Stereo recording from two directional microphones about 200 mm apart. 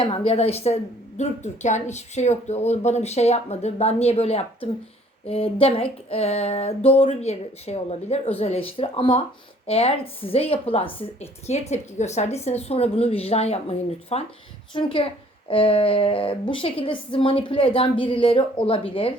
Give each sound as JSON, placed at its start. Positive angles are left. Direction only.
{"t": 0.0, "sound": "a woman's voice", "side_deg": 25}